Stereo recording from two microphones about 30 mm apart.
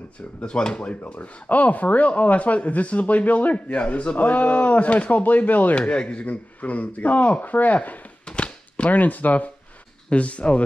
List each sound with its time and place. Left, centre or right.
0.4 s speech: left
1.1 s speech: left
5.1 s speech: left
5.8 s speech: left
8.3 s a sound: left
8.9 s speech: left
10.0 s speech: left